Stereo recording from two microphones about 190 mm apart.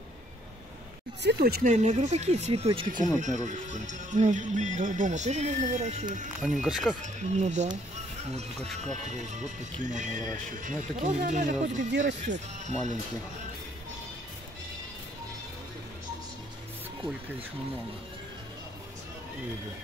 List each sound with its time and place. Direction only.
1.2 s speech: 55° right (ahead or behind)
1.7 s speech: 35° right (ahead or behind)
6.6 s speech: centre (ahead or behind)
7.2 s speech: 35° right (ahead or behind)